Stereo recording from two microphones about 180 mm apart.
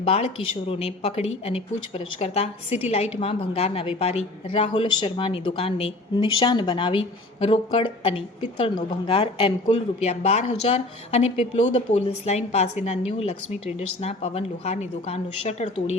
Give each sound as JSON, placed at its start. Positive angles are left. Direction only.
{"t": 0.0, "sound": "a woman's voice", "side_deg": 35}